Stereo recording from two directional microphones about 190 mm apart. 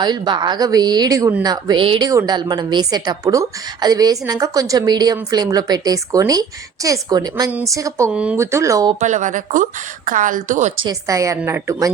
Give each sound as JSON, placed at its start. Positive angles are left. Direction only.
{"t": 0.0, "sound": "a woman's voice", "side_deg": -20}
{"t": 8.1, "sound": "a woman's voice", "side_deg": -5}
{"t": 9.0, "sound": "a woman's voice", "side_deg": -40}
{"t": 10.8, "sound": "a woman's voice", "side_deg": -15}